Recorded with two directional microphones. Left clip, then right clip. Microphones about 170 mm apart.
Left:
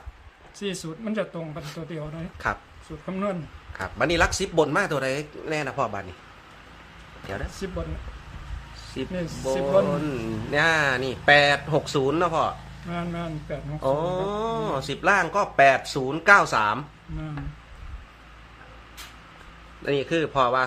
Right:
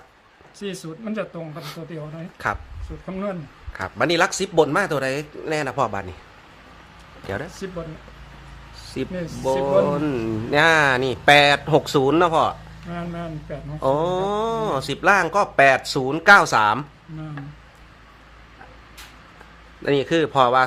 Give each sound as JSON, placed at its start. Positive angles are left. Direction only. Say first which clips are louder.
{"t": 0.6, "sound": "speech", "louder": "even", "side_deg": 10}
{"t": 2.4, "sound": "speech", "louder": "right 3 dB", "side_deg": -30}
{"t": 3.1, "sound": "speech", "louder": "even", "side_deg": 10}
{"t": 3.7, "sound": "speech", "louder": "right 3 dB", "side_deg": -30}
{"t": 7.6, "sound": "speech", "louder": "right 1 dB", "side_deg": 5}
{"t": 9.0, "sound": "speech", "louder": "right 3 dB", "side_deg": -50}
{"t": 12.9, "sound": "speech", "louder": "even", "side_deg": 5}
{"t": 13.8, "sound": "speech", "louder": "right 4 dB", "side_deg": -50}
{"t": 19.8, "sound": "speech", "louder": "right 5 dB", "side_deg": -45}